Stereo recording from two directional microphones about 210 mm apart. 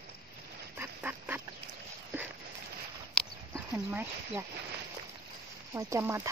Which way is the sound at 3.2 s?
5° left (ahead or behind).